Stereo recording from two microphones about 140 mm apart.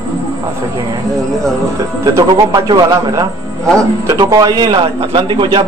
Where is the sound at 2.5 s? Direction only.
30° right (ahead or behind).